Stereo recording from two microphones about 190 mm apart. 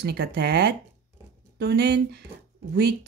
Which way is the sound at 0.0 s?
55° right (ahead or behind).